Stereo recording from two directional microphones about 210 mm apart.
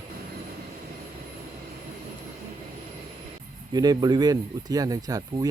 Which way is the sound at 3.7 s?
20° right (ahead or behind).